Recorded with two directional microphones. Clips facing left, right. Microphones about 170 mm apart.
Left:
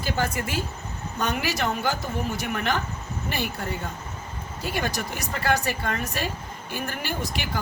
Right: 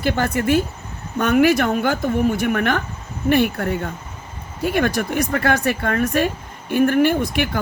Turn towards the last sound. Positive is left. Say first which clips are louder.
# right 10 dB
turn(degrees=-60)  # may be behind; listen again after turning